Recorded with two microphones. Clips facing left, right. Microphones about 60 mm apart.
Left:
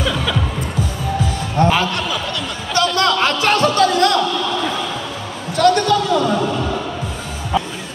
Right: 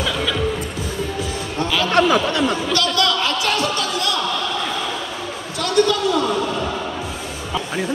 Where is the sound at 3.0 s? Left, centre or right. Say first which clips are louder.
Left 3 dB; left.